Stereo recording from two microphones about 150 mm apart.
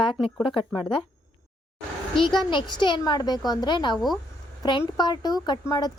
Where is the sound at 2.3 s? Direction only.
30° left (ahead or behind).